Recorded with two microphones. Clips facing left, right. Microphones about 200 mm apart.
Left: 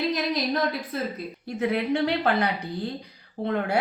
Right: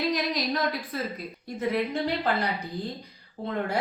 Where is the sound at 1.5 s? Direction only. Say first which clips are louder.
Left 3 dB; 70° left (ahead or behind).